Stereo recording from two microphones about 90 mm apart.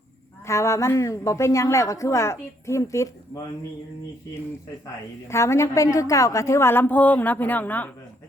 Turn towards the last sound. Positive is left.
turn(degrees=20)  # may be behind; listen again after turning